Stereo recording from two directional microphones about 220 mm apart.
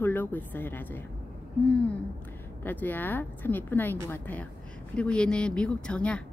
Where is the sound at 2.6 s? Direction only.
10° left (ahead or behind).